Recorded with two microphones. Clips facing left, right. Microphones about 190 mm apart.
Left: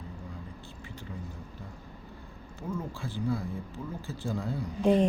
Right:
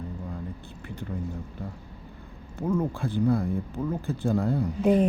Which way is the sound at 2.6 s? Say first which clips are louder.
Right 9 dB; 55° right (ahead or behind).